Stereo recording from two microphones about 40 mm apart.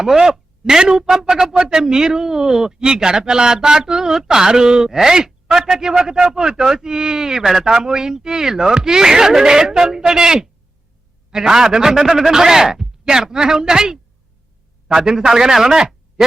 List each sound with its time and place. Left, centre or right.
0.0 s speech: centre